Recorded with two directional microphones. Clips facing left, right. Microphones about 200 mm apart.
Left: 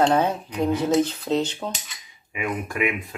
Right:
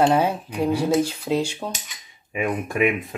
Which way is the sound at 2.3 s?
20° right (ahead or behind).